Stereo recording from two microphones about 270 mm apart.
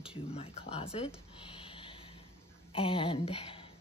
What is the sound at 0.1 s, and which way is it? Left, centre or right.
Speech, left.